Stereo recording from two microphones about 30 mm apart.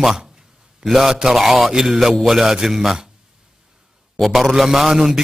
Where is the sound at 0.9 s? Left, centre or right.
Centre.